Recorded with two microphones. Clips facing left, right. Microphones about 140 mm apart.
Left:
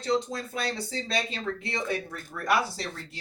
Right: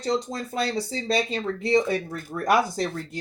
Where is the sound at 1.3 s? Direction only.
40° right (ahead or behind).